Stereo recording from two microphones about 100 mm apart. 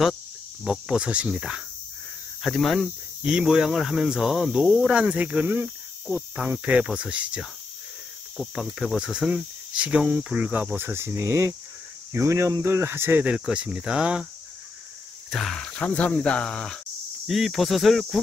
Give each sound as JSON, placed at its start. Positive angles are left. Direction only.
{"t": 0.7, "sound": "speech", "side_deg": -10}
{"t": 15.2, "sound": "speech", "side_deg": 0}